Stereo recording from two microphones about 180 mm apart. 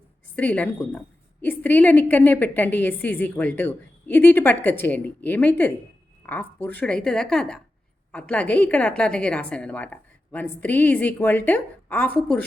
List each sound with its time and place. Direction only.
0.3 s a woman's voice: 10° left (ahead or behind)